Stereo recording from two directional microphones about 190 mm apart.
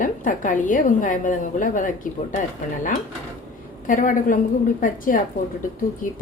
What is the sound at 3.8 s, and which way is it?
A woman's voice, 45° left (ahead or behind).